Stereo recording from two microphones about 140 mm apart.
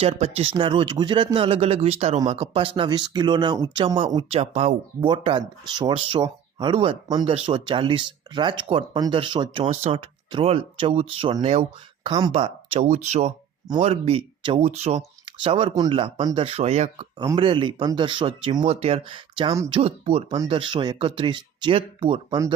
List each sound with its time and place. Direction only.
0.0 s speech: 45° right (ahead or behind)
5.0 s speech: 35° right (ahead or behind)
9.6 s speech: 45° right (ahead or behind)
12.0 s speech: 30° right (ahead or behind)
12.3 s speech: 45° right (ahead or behind)
15.7 s speech: 35° right (ahead or behind)
17.2 s speech: 30° right (ahead or behind)
18.6 s speech: 50° right (ahead or behind); by 19.5 s 35° right (ahead or behind)
19.7 s speech: 45° right (ahead or behind)